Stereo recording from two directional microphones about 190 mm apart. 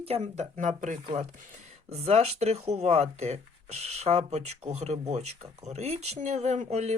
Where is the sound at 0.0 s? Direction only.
35° right (ahead or behind).